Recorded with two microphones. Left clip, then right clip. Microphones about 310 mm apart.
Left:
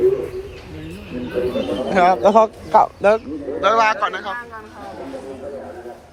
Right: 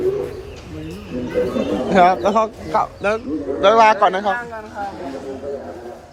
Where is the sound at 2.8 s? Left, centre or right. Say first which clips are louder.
Left 5 dB; centre.